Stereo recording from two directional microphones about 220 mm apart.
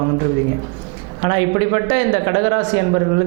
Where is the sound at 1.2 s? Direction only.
20° right (ahead or behind).